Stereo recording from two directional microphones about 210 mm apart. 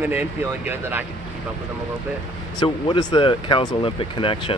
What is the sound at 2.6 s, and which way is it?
Speech, 20° left (ahead or behind).